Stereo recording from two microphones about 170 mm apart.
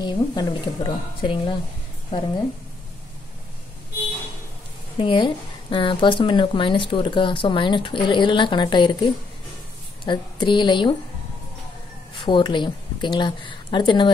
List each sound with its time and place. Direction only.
0.0 s speech: 25° left (ahead or behind)
4.9 s speech: 30° left (ahead or behind)
12.2 s speech: 25° left (ahead or behind)